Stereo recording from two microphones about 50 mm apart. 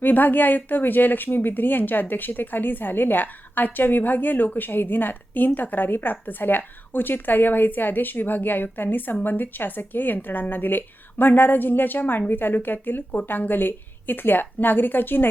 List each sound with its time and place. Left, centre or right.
0.0 s speech: left